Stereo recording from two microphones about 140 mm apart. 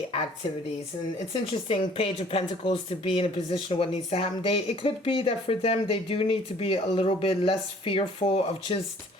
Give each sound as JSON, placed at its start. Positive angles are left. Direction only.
{"t": 1.3, "sound": "speech", "side_deg": 40}